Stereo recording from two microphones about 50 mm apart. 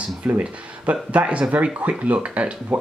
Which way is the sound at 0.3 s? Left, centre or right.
Right.